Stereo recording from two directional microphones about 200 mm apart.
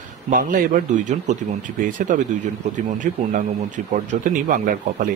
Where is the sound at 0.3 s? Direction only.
45° right (ahead or behind).